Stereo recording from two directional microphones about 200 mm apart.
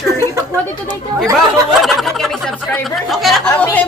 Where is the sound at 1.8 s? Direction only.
Centre (ahead or behind).